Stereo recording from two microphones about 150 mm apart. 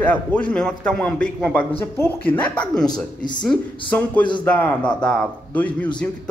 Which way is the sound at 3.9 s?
10° left (ahead or behind).